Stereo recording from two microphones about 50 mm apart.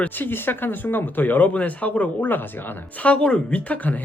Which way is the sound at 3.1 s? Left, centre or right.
Left.